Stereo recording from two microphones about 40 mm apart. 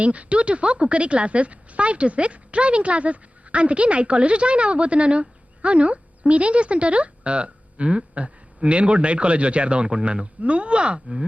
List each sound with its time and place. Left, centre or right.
0.0 s a woman's voice: right